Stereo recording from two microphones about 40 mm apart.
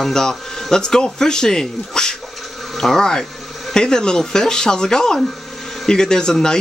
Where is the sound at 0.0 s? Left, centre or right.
Centre.